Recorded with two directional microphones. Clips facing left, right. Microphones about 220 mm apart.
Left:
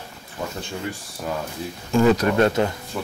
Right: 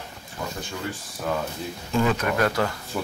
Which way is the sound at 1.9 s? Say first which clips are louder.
Left 6 dB; 35° left (ahead or behind).